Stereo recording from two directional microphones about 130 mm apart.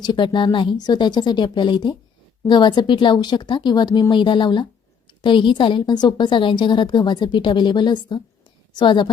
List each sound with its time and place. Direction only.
0.0 s a woman's voice: 35° left (ahead or behind)